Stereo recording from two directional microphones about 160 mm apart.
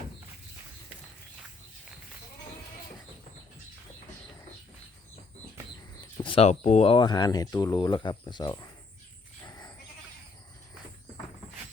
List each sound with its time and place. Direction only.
6.2 s speech: 40° left (ahead or behind)
6.9 s speech: 25° left (ahead or behind)
9.5 s goat: 20° left (ahead or behind)